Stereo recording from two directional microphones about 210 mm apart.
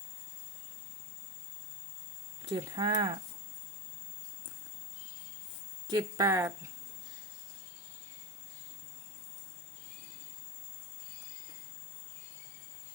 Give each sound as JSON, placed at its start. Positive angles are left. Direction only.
{"t": 2.5, "sound": "speech", "side_deg": -20}
{"t": 5.9, "sound": "speech", "side_deg": -20}